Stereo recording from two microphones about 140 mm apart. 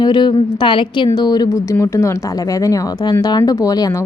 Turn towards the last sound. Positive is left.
turn(degrees=25)  # may be behind; listen again after turning